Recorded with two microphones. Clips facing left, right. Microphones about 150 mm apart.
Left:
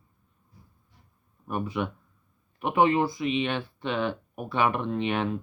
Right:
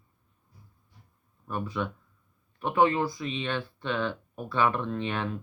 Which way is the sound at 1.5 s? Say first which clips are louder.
Left 2 dB; 15° left (ahead or behind).